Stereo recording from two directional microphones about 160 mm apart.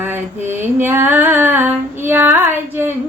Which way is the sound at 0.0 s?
10° right (ahead or behind).